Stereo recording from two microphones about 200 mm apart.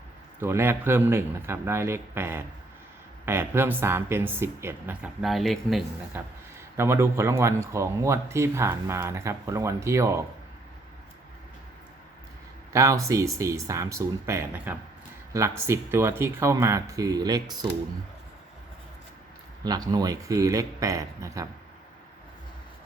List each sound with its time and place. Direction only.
0.3 s speech: 10° right (ahead or behind)
5.2 s speech: centre (ahead or behind)
6.7 s speech: 10° right (ahead or behind)
12.7 s speech: 15° right (ahead or behind)
19.6 s speech: 20° right (ahead or behind)